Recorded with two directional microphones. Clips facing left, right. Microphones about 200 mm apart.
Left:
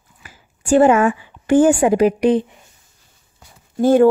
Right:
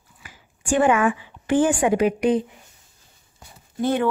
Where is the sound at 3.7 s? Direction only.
45° left (ahead or behind).